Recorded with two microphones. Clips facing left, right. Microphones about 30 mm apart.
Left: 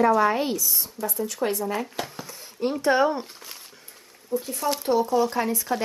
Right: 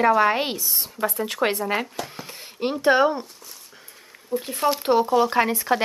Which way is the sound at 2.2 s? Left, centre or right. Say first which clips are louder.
Right 1 dB; right.